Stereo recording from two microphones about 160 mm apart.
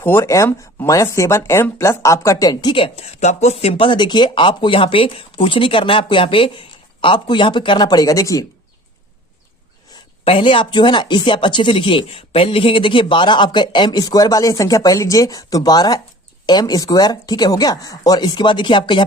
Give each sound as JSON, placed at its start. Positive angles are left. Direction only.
{"t": 0.0, "sound": "speech", "side_deg": 15}
{"t": 10.2, "sound": "speech", "side_deg": 35}